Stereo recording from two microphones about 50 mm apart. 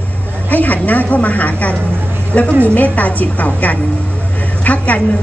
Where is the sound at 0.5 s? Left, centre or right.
Left.